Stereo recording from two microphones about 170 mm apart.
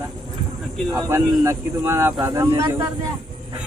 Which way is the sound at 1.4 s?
15° right (ahead or behind).